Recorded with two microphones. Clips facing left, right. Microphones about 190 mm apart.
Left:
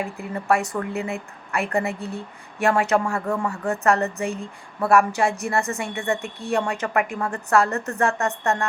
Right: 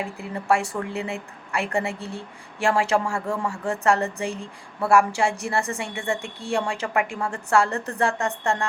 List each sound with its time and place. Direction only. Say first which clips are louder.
0.2 s a woman's voice: even; 30° right (ahead or behind)